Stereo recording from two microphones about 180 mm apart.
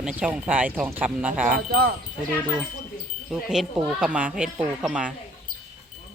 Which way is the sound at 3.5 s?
5° right (ahead or behind).